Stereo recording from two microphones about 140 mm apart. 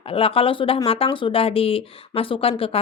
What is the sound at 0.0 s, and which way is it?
A woman's voice, 40° left (ahead or behind).